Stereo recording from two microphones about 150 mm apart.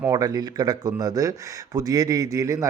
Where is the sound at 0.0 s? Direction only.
25° right (ahead or behind).